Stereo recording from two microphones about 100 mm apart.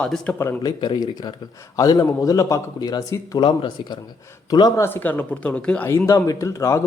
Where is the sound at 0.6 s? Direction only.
45° left (ahead or behind).